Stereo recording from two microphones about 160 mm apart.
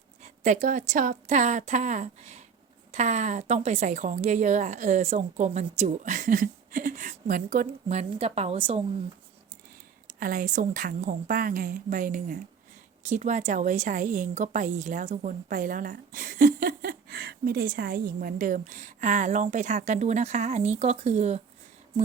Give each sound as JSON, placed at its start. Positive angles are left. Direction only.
{"t": 0.2, "sound": "a woman's voice", "side_deg": -50}
{"t": 10.1, "sound": "a woman's voice", "side_deg": -65}